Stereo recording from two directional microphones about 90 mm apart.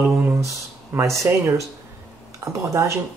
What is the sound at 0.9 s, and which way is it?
Speech, 35° right (ahead or behind).